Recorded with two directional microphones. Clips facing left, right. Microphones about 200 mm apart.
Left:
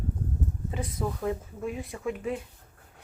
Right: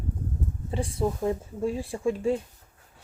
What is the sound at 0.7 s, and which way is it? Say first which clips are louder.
Speech: right 6 dB; 30° right (ahead or behind).